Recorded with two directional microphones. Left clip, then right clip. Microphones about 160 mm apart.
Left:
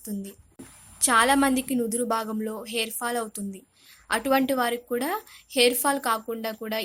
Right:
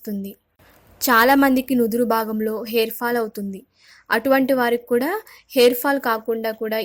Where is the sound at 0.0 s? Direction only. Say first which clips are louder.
Right 6 dB; 40° right (ahead or behind).